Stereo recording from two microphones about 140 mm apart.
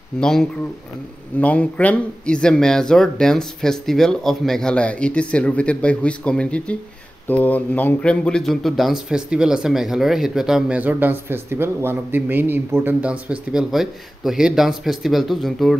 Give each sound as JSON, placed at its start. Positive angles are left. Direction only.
{"t": 0.2, "sound": "speech", "side_deg": 5}